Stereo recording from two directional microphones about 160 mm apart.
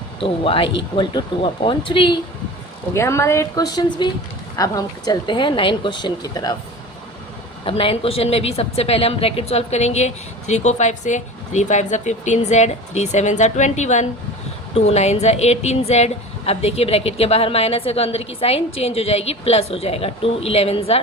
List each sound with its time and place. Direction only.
0.2 s a woman's voice: 35° left (ahead or behind)
2.9 s speech: 15° left (ahead or behind)
7.6 s a woman's voice: 35° left (ahead or behind)